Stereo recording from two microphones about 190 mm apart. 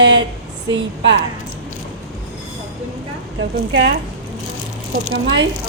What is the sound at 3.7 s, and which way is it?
Speech, 65° right (ahead or behind).